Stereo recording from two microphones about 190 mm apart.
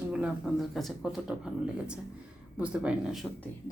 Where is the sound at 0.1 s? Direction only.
5° right (ahead or behind).